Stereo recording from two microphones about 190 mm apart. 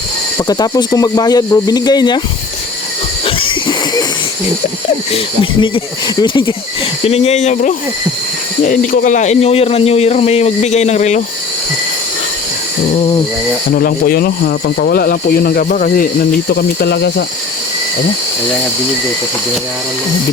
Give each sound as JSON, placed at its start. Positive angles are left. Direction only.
{"t": 0.4, "sound": "speech", "side_deg": 20}
{"t": 3.2, "sound": "a sound", "side_deg": 25}
{"t": 5.1, "sound": "speech", "side_deg": 25}
{"t": 13.7, "sound": "speech", "side_deg": 50}